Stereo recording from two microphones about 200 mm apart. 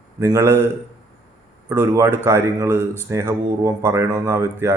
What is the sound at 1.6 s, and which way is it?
A man's voice, 10° right (ahead or behind).